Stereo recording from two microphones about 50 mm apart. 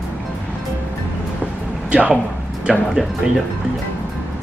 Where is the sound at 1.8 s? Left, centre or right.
Right.